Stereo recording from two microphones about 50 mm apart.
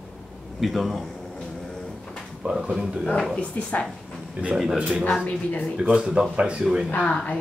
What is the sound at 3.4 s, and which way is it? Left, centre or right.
Speech, left.